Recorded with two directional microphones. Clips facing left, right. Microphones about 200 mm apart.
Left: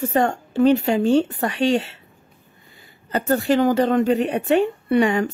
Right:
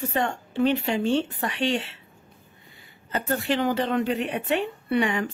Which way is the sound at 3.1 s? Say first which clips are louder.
Left 7 dB; 40° left (ahead or behind).